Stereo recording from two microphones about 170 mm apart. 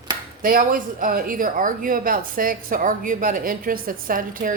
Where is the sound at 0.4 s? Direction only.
55° right (ahead or behind).